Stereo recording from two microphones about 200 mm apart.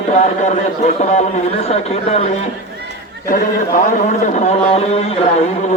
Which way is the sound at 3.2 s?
45° left (ahead or behind).